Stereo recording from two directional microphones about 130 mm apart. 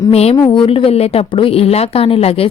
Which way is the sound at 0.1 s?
55° left (ahead or behind).